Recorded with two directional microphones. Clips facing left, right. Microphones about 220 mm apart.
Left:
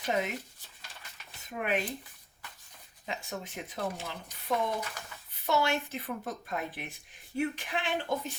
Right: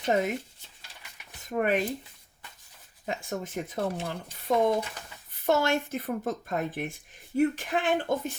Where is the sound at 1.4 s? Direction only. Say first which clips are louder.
Right 6 dB; 50° right (ahead or behind).